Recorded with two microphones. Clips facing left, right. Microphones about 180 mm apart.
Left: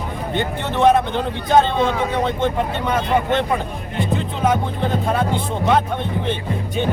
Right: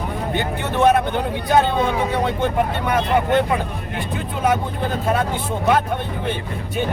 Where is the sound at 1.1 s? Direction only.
10° right (ahead or behind).